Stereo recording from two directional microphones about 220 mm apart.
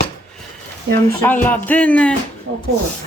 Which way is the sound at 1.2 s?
10° left (ahead or behind).